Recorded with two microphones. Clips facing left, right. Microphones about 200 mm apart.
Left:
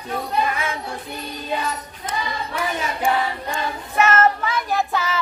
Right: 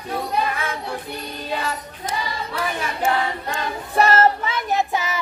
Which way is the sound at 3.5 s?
35° right (ahead or behind).